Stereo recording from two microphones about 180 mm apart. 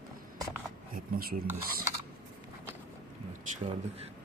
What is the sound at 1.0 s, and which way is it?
Speech, 55° right (ahead or behind).